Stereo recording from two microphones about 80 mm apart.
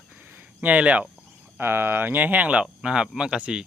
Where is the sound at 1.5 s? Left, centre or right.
Right.